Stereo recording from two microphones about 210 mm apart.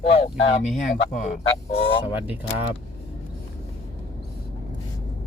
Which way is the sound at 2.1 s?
10° right (ahead or behind).